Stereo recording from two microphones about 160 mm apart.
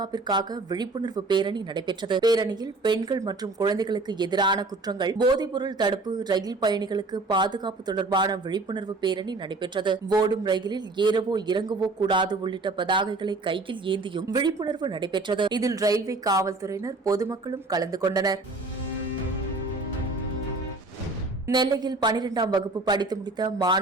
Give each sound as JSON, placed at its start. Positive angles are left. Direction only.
{"t": 0.0, "sound": "a woman's voice", "side_deg": -25}
{"t": 21.4, "sound": "a woman's voice", "side_deg": -25}